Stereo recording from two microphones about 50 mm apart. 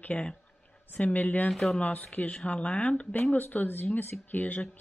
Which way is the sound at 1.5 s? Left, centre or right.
Centre.